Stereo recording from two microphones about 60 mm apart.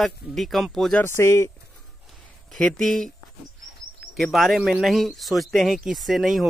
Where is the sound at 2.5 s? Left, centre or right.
Centre.